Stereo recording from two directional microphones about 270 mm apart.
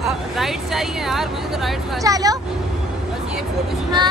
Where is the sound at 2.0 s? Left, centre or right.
Centre.